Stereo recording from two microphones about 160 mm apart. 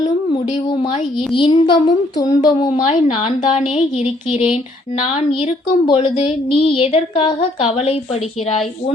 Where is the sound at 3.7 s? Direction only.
40° left (ahead or behind).